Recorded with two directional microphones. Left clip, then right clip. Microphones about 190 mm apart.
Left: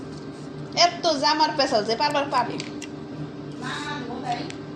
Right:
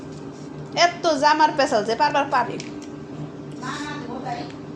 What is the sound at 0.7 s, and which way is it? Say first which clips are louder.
A woman's voice: right 1 dB; 20° right (ahead or behind).